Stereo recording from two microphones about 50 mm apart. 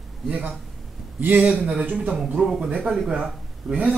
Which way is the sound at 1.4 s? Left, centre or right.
Right.